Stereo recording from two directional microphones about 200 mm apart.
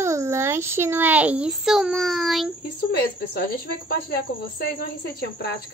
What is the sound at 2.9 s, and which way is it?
Speech, 55° left (ahead or behind).